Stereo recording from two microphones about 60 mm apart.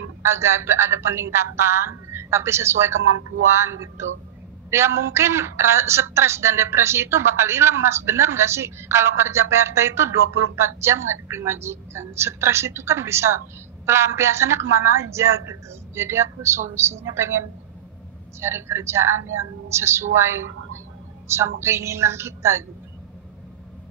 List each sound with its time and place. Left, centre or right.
0.2 s a woman's voice: right